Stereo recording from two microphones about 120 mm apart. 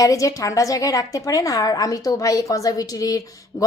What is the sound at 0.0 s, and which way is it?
A woman's voice, 25° left (ahead or behind).